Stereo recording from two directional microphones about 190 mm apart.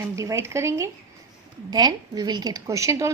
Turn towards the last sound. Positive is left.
turn(degrees=-15)  # may be behind; listen again after turning